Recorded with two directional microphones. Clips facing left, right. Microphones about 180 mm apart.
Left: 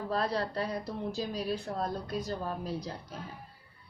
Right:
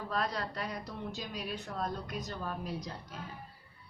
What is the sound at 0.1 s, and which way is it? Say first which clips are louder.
Speech: left 4 dB; 30° left (ahead or behind).